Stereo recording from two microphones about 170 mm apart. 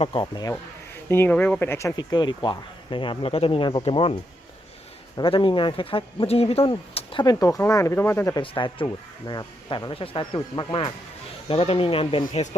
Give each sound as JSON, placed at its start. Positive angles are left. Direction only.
{"t": 0.0, "sound": "speech", "side_deg": 30}
{"t": 1.0, "sound": "speech", "side_deg": 15}
{"t": 2.0, "sound": "speech", "side_deg": 25}
{"t": 8.4, "sound": "speech", "side_deg": 30}